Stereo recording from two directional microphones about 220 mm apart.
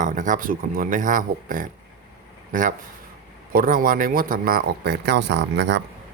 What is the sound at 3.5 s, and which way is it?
Speech, 40° right (ahead or behind).